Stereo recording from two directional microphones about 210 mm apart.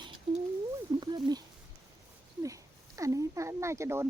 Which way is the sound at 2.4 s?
15° right (ahead or behind).